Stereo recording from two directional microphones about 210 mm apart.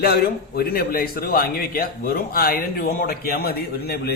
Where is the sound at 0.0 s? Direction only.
50° left (ahead or behind).